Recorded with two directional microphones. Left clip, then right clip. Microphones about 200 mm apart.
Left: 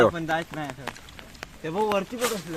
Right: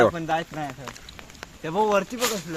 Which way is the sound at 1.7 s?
65° right (ahead or behind).